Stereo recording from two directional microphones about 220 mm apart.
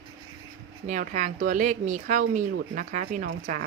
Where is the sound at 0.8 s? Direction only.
35° right (ahead or behind).